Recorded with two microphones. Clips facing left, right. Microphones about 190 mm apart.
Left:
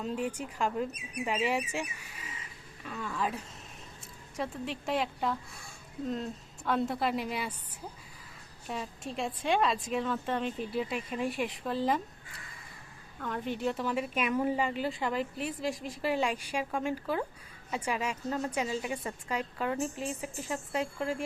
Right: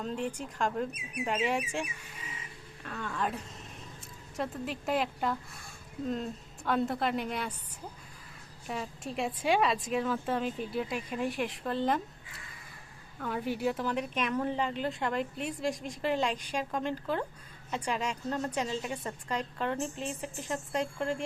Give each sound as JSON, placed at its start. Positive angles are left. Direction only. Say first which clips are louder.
{"t": 0.0, "sound": "a woman's voice", "louder": "left 1 dB", "side_deg": 5}
{"t": 8.6, "sound": "speech", "louder": "right 1 dB", "side_deg": 0}
{"t": 13.1, "sound": "a woman's voice", "louder": "right 1 dB", "side_deg": -5}